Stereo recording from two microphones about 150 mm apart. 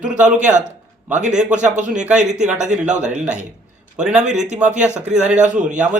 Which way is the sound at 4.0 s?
5° right (ahead or behind).